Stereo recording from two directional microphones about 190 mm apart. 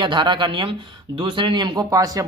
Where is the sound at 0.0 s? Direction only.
25° right (ahead or behind).